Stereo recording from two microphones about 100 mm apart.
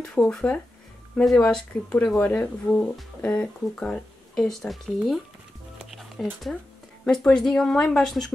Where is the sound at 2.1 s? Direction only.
15° left (ahead or behind).